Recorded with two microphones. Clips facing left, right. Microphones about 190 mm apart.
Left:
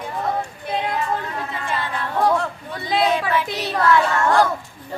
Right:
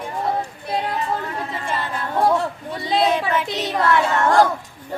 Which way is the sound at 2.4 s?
30° right (ahead or behind).